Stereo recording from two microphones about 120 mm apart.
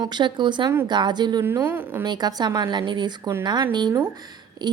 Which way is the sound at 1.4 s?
15° right (ahead or behind).